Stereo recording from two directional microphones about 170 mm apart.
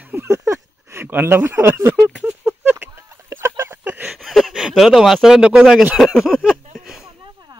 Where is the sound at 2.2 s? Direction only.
10° right (ahead or behind).